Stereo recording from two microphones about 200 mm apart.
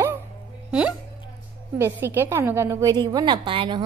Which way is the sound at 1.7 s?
10° right (ahead or behind).